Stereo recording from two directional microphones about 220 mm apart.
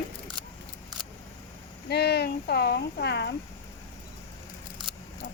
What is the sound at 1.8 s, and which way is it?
Speech, 50° left (ahead or behind).